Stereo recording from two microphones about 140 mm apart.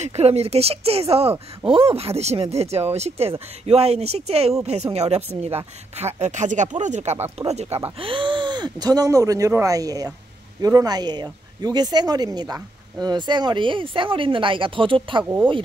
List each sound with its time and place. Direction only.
0.0 s speech: 50° right (ahead or behind)
8.0 s speech: 35° right (ahead or behind)